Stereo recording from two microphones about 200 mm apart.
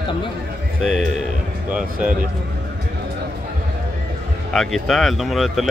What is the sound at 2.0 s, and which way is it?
Speech, 5° right (ahead or behind).